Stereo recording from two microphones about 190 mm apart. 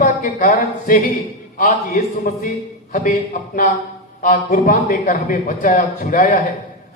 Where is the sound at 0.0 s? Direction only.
45° left (ahead or behind).